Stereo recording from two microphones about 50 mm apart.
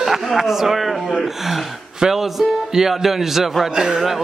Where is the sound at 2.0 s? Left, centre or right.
Centre.